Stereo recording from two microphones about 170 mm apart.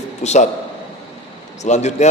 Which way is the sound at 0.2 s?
40° left (ahead or behind).